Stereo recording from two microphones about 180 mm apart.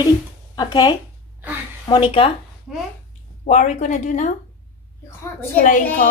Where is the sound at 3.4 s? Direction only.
40° left (ahead or behind).